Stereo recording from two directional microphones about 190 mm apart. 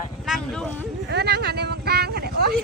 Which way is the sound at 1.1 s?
60° right (ahead or behind).